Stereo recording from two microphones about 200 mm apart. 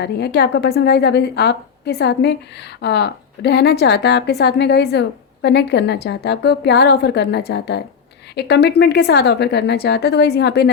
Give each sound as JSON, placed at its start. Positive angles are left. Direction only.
{"t": 0.0, "sound": "a woman's voice", "side_deg": 55}